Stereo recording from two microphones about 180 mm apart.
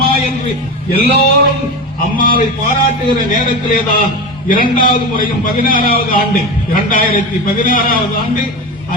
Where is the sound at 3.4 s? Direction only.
50° left (ahead or behind).